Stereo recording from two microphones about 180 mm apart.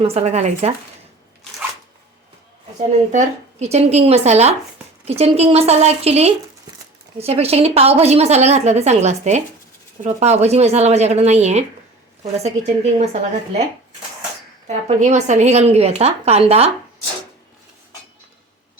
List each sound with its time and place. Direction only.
0.0 s a woman's voice: 35° right (ahead or behind)
3.1 s a woman's voice: 40° right (ahead or behind)
14.7 s a woman's voice: 40° right (ahead or behind)